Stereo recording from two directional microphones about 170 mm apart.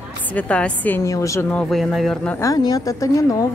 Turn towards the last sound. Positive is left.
turn(degrees=20)  # may be behind; listen again after turning